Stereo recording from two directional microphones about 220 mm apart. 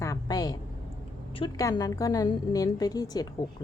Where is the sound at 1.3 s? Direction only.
20° left (ahead or behind).